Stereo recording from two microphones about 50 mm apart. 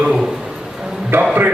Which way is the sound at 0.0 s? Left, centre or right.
Centre.